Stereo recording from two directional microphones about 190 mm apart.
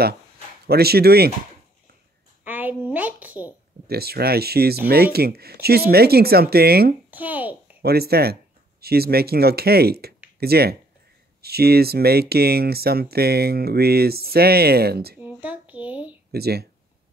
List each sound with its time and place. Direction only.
0.7 s speech: 55° right (ahead or behind)
2.4 s a woman's voice: 10° right (ahead or behind)
3.8 s speech: 55° right (ahead or behind)
7.1 s a child's voice: 10° right (ahead or behind)
7.8 s speech: 55° right (ahead or behind)
15.1 s a sound: 10° right (ahead or behind)
16.3 s speech: 55° right (ahead or behind)